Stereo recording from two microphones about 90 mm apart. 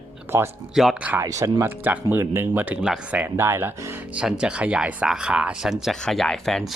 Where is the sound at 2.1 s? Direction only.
25° right (ahead or behind).